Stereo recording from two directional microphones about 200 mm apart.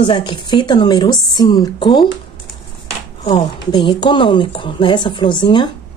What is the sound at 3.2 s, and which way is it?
Speech, 20° left (ahead or behind).